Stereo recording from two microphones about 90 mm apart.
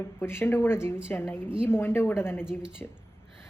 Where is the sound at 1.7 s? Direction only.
25° left (ahead or behind).